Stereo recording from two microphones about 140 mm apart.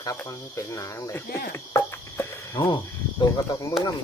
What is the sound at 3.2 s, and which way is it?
Speech, 25° left (ahead or behind).